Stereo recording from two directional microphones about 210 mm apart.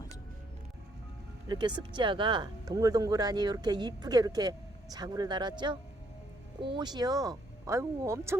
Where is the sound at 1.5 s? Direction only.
20° right (ahead or behind).